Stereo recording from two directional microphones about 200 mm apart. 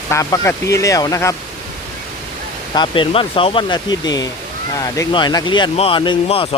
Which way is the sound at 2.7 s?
25° left (ahead or behind).